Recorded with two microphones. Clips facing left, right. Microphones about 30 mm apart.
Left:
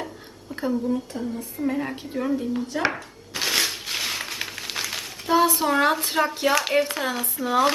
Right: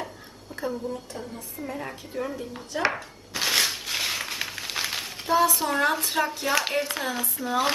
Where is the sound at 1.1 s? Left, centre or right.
Centre.